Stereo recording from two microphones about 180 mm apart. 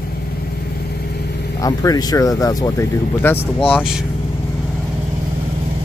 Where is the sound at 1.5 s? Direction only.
20° left (ahead or behind).